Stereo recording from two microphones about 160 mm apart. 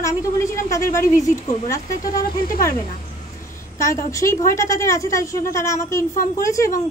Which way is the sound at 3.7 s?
20° left (ahead or behind).